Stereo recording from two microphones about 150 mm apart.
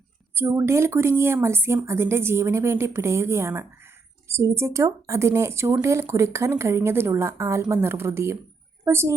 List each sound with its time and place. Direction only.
0.3 s a woman's voice: 20° right (ahead or behind)